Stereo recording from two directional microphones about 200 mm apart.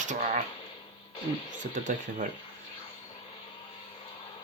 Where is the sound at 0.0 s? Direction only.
40° right (ahead or behind).